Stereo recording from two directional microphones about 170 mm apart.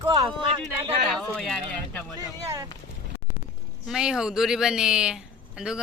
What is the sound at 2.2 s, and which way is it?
Speech, 15° right (ahead or behind).